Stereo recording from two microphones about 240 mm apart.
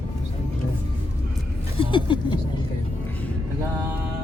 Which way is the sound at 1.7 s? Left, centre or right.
Left.